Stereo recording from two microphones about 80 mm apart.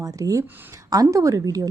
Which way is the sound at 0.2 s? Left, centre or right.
Right.